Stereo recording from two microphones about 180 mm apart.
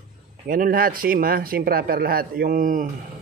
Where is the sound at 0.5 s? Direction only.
50° right (ahead or behind).